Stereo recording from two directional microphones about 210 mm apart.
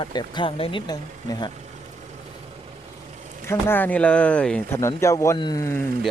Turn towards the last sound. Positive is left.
turn(degrees=15)  # may be behind; listen again after turning